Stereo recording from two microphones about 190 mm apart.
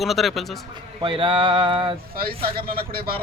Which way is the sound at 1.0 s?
25° right (ahead or behind).